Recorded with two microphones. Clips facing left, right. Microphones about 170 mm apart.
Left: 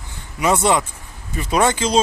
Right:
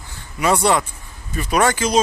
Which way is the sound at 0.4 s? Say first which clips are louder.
Even; 20° left (ahead or behind).